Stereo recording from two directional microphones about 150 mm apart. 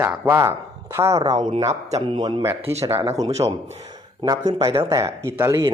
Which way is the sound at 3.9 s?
25° right (ahead or behind).